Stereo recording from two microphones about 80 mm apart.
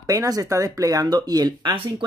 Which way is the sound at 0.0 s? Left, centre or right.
Right.